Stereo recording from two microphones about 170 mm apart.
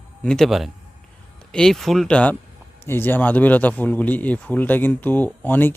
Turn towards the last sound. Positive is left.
turn(degrees=10)  # may be behind; listen again after turning